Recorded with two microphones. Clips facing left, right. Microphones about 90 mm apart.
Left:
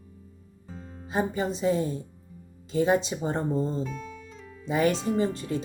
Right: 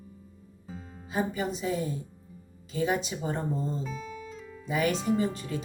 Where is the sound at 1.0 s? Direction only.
30° left (ahead or behind).